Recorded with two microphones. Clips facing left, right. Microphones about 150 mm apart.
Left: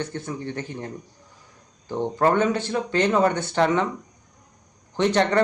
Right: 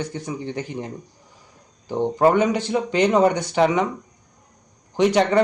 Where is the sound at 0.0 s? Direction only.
10° right (ahead or behind).